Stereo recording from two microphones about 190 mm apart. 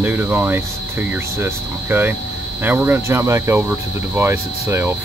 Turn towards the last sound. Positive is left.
turn(degrees=-10)  # may be behind; listen again after turning